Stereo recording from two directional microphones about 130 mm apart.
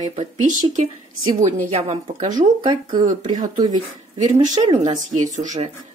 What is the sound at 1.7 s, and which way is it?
Speech, 50° right (ahead or behind).